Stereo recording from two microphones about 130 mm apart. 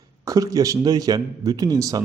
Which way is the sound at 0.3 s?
25° right (ahead or behind).